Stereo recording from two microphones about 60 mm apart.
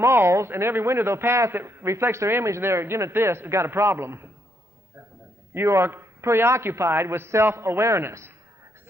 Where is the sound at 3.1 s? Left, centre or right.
Right.